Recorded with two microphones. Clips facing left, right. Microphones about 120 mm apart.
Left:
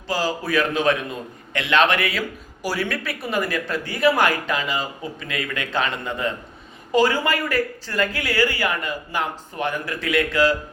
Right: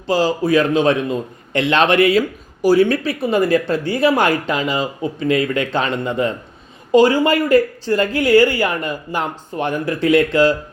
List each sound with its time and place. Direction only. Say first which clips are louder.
0.1 s a man's voice: right 7 dB; 25° right (ahead or behind)